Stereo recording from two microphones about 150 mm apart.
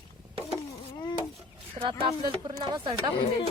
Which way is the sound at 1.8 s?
35° right (ahead or behind).